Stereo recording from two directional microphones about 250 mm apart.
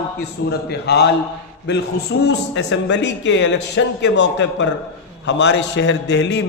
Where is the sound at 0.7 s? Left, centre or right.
Left.